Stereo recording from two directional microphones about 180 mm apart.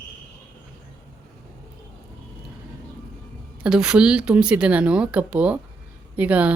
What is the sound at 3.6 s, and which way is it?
Speech, 5° right (ahead or behind).